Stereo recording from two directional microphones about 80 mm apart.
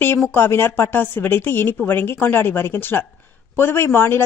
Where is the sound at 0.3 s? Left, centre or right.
Left.